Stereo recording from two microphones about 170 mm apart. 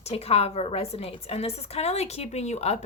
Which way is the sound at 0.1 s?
35° left (ahead or behind).